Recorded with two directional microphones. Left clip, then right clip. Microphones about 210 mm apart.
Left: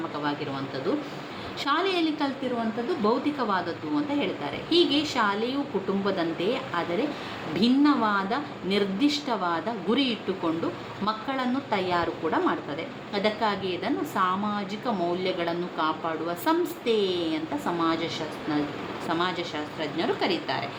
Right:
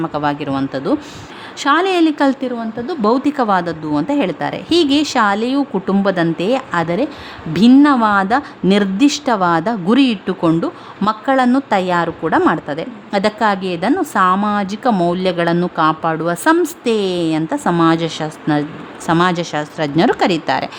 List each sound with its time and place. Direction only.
0.2 s a woman's voice: 55° right (ahead or behind)